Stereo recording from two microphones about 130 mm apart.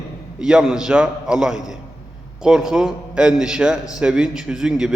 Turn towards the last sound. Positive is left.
turn(degrees=-5)  # may be behind; listen again after turning